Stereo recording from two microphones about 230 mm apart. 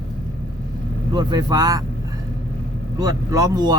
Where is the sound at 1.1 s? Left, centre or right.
Centre.